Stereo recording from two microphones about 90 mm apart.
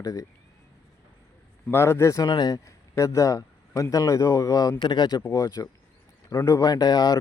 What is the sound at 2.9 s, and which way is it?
A man's voice, 35° left (ahead or behind).